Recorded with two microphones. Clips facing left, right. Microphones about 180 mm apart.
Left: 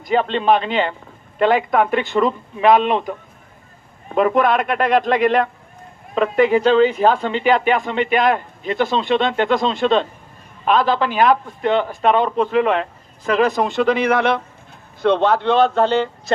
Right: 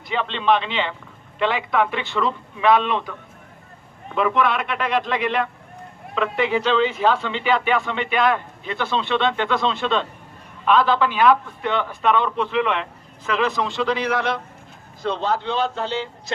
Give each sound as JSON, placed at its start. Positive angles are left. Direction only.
{"t": 0.1, "sound": "speech", "side_deg": 45}